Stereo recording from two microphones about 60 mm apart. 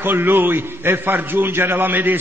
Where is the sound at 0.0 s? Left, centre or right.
Right.